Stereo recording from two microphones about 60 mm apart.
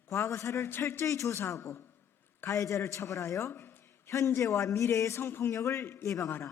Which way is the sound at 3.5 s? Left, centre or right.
Left.